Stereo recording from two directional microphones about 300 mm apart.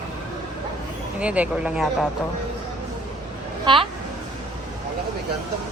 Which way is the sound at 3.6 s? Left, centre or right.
Centre.